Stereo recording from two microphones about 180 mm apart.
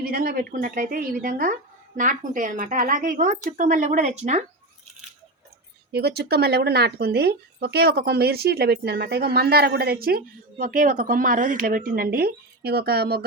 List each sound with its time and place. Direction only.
0.0 s speech: 55° right (ahead or behind); by 4.4 s 40° right (ahead or behind)
5.9 s speech: 65° right (ahead or behind)